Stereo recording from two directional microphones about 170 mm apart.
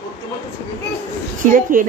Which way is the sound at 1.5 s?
55° right (ahead or behind).